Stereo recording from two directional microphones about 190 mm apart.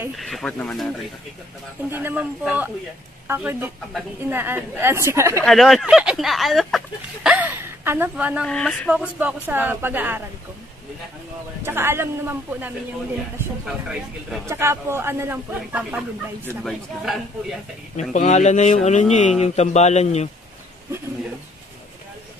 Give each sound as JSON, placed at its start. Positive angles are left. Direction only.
{"t": 0.2, "sound": "speech", "side_deg": 0}
{"t": 1.9, "sound": "a woman's voice", "side_deg": -10}
{"t": 5.4, "sound": "a woman's voice", "side_deg": 0}
{"t": 8.5, "sound": "a woman's voice", "side_deg": 5}
{"t": 11.6, "sound": "a woman's voice", "side_deg": -10}
{"t": 14.4, "sound": "a woman's voice", "side_deg": -15}
{"t": 18.1, "sound": "speech", "side_deg": 35}